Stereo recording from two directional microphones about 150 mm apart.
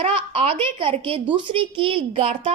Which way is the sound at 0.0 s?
40° right (ahead or behind).